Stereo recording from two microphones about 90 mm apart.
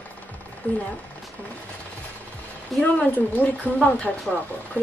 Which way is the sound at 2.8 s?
15° left (ahead or behind).